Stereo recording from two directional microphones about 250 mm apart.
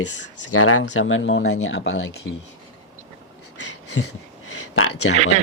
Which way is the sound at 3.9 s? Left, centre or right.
Left.